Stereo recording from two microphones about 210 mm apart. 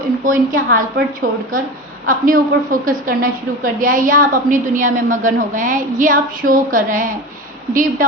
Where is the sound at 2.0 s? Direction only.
40° right (ahead or behind).